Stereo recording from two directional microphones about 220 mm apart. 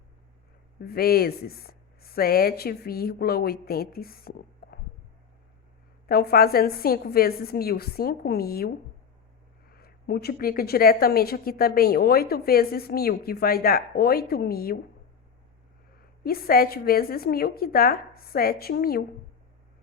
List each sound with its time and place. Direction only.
0.8 s a woman's voice: 45° left (ahead or behind)
6.1 s a woman's voice: 45° left (ahead or behind)
9.7 s a woman's voice: 45° left (ahead or behind)
16.0 s a woman's voice: 45° left (ahead or behind)